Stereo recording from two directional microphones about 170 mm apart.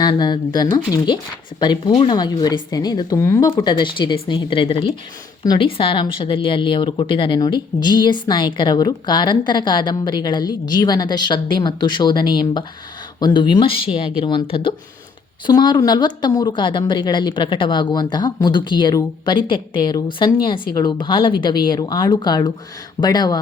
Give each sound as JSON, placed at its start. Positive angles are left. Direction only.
{"t": 0.0, "sound": "speech", "side_deg": 25}
{"t": 3.5, "sound": "speech", "side_deg": 25}